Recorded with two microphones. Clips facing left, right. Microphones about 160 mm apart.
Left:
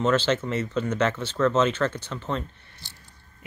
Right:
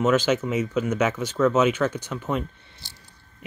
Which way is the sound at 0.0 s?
10° right (ahead or behind).